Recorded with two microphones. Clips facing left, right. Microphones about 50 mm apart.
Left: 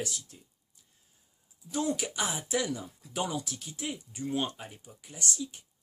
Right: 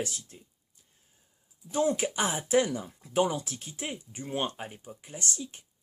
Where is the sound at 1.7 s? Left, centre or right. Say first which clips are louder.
Right 4 dB; right.